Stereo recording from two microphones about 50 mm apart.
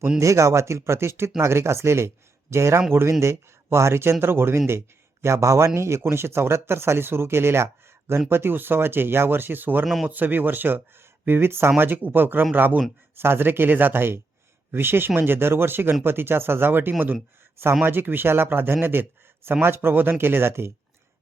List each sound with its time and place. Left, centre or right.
0.2 s speech: right
5.2 s speech: right
8.3 s speech: right
9.8 s speech: centre
10.1 s speech: right
11.3 s speech: right
11.8 s speech: right